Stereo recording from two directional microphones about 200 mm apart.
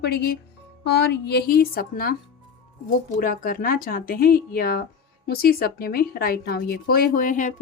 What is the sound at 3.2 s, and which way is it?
Speech, 45° left (ahead or behind).